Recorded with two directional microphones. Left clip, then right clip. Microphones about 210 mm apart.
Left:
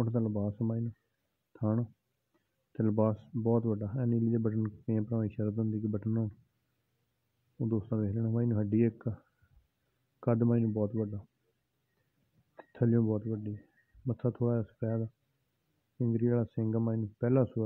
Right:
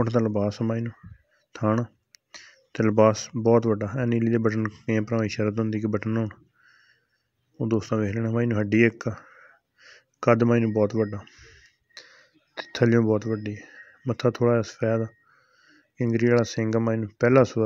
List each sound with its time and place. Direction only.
0.0 s speech: 30° right (ahead or behind)
1.5 s speech: 30° right (ahead or behind)
7.7 s speech: 30° right (ahead or behind)
10.2 s speech: 20° right (ahead or behind)
10.7 s speech: 35° right (ahead or behind)
12.5 s speech: 25° right (ahead or behind)